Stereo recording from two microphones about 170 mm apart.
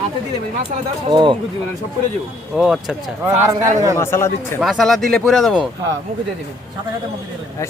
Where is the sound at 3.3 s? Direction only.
15° right (ahead or behind).